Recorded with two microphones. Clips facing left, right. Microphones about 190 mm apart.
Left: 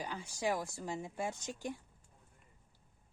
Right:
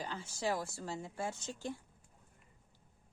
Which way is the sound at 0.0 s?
15° left (ahead or behind).